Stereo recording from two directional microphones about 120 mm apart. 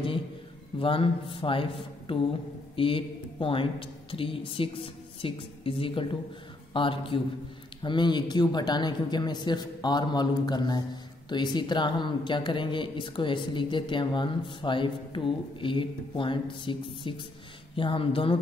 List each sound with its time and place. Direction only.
0.7 s speech: 50° left (ahead or behind)